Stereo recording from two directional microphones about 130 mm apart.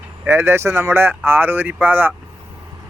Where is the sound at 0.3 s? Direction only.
20° right (ahead or behind).